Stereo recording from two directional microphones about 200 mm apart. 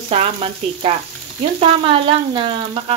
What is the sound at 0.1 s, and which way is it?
Speech, 30° right (ahead or behind).